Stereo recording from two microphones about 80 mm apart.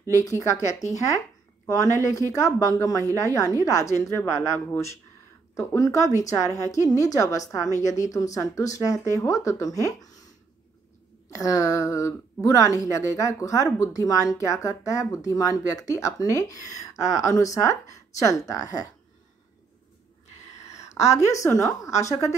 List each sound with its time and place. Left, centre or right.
0.1 s speech: left
11.2 s speech: left
20.7 s a woman's voice: left